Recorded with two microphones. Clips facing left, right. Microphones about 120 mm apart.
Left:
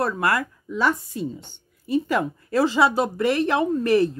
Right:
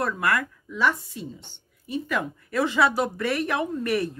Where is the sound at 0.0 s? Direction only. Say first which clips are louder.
Left 3 dB; 30° left (ahead or behind); by 1.5 s 45° left (ahead or behind).